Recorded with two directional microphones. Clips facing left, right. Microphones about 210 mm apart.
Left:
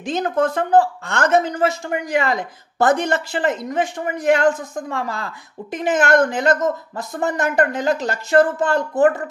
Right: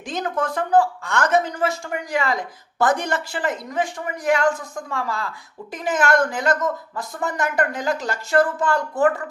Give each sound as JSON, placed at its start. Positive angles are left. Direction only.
{"t": 0.4, "sound": "speech", "side_deg": 25}